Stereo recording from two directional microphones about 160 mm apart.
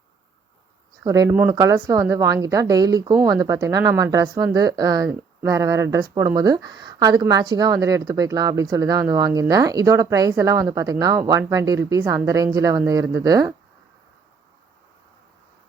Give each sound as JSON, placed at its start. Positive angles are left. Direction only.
{"t": 1.0, "sound": "speech", "side_deg": -20}